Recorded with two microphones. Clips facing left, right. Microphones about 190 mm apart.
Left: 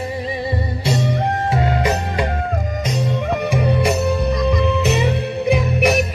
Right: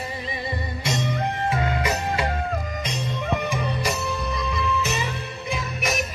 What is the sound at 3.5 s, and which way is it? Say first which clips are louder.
Music: left 8 dB; 60° left (ahead or behind).